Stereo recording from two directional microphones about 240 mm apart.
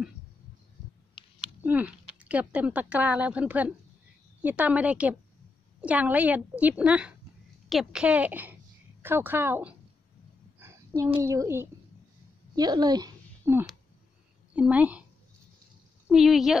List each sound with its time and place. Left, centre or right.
1.6 s a child's voice: centre
10.6 s a sound: centre
11.2 s a woman's voice: centre
16.1 s a child's voice: centre